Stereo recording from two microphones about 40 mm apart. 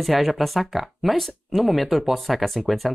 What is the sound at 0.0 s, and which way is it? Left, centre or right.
Speech, centre.